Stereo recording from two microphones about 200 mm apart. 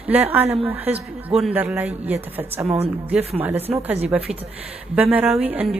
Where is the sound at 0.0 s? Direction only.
10° right (ahead or behind).